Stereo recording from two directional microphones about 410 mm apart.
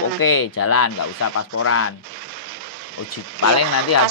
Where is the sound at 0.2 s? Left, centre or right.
Left.